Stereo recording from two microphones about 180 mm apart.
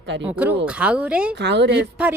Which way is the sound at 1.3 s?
75° right (ahead or behind).